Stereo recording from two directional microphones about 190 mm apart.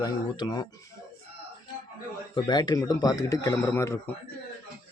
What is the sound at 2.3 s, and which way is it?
A man's voice, 20° left (ahead or behind).